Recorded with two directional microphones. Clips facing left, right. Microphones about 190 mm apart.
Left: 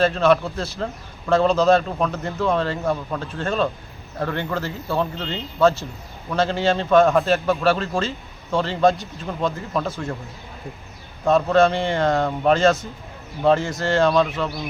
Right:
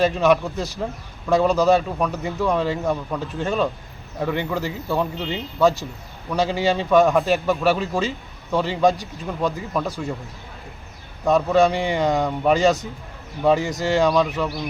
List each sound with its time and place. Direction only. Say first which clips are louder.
0.0 s a man's voice: even; 15° right (ahead or behind)
11.3 s a man's voice: even; 15° right (ahead or behind)
12.3 s speech: left 1 dB; 5° right (ahead or behind)
12.5 s a man's voice: even; 15° right (ahead or behind)